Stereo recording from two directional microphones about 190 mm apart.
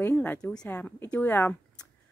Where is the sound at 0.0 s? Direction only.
10° left (ahead or behind).